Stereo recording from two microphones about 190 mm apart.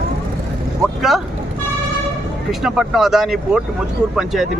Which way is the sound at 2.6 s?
Centre (ahead or behind).